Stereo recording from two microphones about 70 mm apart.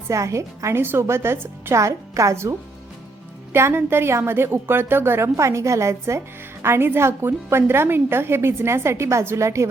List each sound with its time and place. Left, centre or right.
0.1 s a woman's voice: right